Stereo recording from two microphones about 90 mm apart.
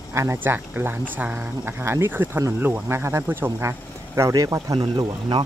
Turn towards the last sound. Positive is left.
turn(degrees=-60)  # may be behind; listen again after turning